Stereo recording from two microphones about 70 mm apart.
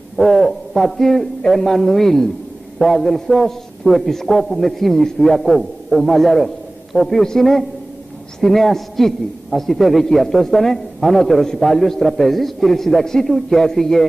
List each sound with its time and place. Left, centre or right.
0.2 s a man's voice: centre